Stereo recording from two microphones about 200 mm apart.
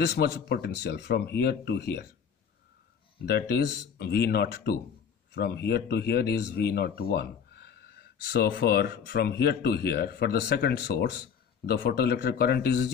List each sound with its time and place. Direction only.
0.0 s speech: 55° left (ahead or behind)
3.3 s speech: 50° left (ahead or behind)